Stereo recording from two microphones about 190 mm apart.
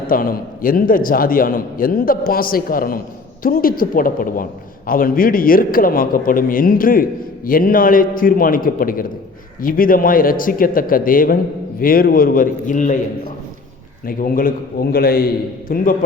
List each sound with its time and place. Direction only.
0.1 s a man's voice: 50° left (ahead or behind)
14.0 s a man's voice: 45° left (ahead or behind)